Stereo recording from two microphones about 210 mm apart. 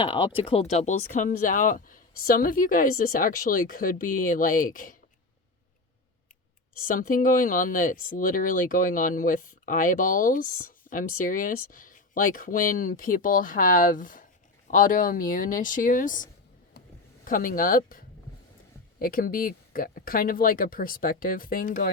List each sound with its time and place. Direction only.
0.0 s speech: 25° left (ahead or behind); by 4.9 s 40° left (ahead or behind)
6.7 s speech: 40° left (ahead or behind)
17.2 s speech: 40° left (ahead or behind)